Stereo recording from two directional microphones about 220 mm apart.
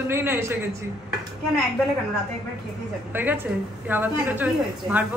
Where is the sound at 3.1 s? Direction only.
10° right (ahead or behind).